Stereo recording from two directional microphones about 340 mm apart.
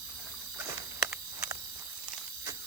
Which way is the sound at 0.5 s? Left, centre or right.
Centre.